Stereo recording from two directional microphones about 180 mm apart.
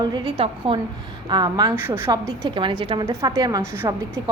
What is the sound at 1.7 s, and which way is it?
A woman's voice, 15° right (ahead or behind).